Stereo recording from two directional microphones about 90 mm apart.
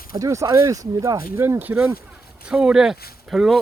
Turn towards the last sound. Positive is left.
turn(degrees=-5)  # may be behind; listen again after turning